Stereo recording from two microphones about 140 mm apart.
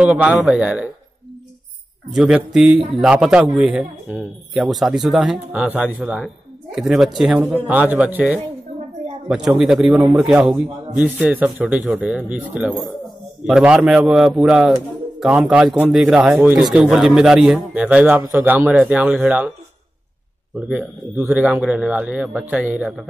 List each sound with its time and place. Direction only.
0.0 s a man's voice: 10° right (ahead or behind)
2.1 s a man's voice: 5° right (ahead or behind)
16.3 s a man's voice: 15° right (ahead or behind)
16.7 s a man's voice: 5° right (ahead or behind)
20.5 s a man's voice: 10° right (ahead or behind)